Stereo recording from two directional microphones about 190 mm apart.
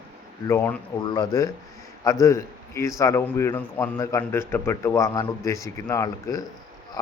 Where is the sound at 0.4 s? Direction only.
10° left (ahead or behind).